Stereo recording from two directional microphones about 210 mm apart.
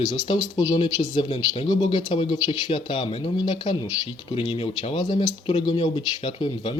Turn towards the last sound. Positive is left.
turn(degrees=25)  # may be behind; listen again after turning